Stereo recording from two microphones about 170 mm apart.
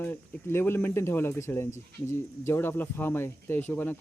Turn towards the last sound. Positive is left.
turn(degrees=10)  # may be behind; listen again after turning